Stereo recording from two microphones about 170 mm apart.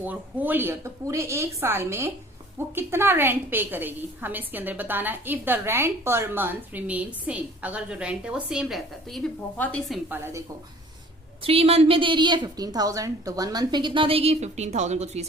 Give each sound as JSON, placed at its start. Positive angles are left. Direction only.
{"t": 0.0, "sound": "a woman's voice", "side_deg": -10}
{"t": 11.4, "sound": "a woman's voice", "side_deg": -35}